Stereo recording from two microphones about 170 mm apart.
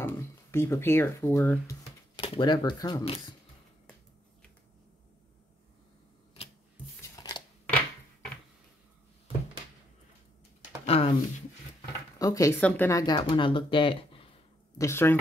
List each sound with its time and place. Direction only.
0.0 s speech: 15° left (ahead or behind)
2.1 s speech: 30° left (ahead or behind)
6.4 s rub: 35° left (ahead or behind)
7.0 s a sound: 20° left (ahead or behind)
10.9 s a sound: 35° left (ahead or behind)
12.2 s speech: 20° left (ahead or behind)
14.8 s speech: 15° left (ahead or behind)